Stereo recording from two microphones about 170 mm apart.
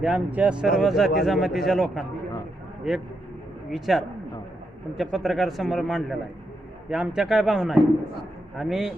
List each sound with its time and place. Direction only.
0.0 s a man's voice: 5° right (ahead or behind)
3.7 s a man's voice: centre (ahead or behind)